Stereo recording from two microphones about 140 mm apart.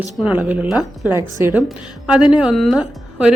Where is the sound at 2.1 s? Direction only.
5° right (ahead or behind).